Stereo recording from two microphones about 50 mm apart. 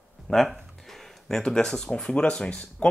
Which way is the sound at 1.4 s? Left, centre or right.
Centre.